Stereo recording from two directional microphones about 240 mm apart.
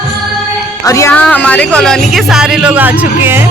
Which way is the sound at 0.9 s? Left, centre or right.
Centre.